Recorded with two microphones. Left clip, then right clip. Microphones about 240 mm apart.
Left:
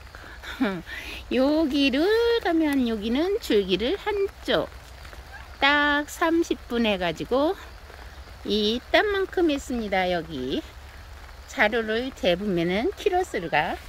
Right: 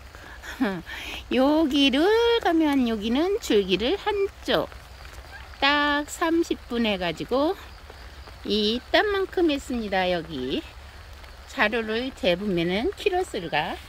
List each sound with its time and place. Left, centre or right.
0.5 s speech: centre